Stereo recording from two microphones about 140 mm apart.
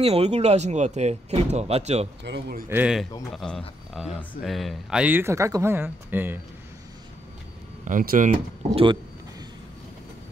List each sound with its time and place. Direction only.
0.0 s speech: 45° right (ahead or behind)
2.7 s speech: 10° right (ahead or behind)
3.3 s speech: 5° left (ahead or behind); by 6.4 s 15° right (ahead or behind)
7.8 s speech: 80° right